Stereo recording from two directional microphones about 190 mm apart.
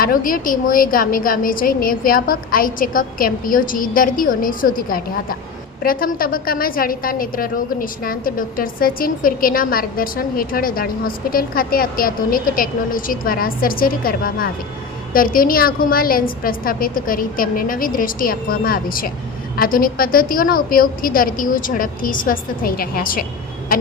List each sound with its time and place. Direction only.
0.0 s a woman's voice: 45° left (ahead or behind)